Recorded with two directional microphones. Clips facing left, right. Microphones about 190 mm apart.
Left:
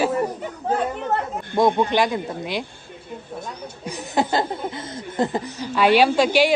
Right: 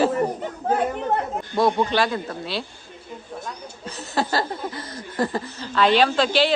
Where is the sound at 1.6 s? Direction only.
15° left (ahead or behind).